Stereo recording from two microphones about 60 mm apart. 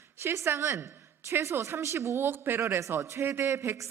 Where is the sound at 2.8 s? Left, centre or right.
Right.